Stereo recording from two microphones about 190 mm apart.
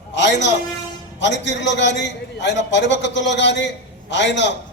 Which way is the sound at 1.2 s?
70° left (ahead or behind).